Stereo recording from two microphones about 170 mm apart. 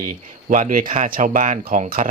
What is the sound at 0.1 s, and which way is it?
Speech, 45° right (ahead or behind).